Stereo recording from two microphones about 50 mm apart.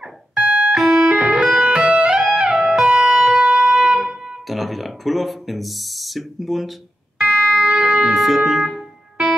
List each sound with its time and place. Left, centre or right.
0.3 s music: right
0.7 s music: centre
1.0 s music: right
4.5 s speech: centre
7.2 s music: right
8.0 s speech: centre